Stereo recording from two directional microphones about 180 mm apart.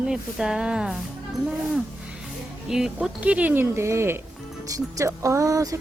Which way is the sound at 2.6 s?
Centre (ahead or behind).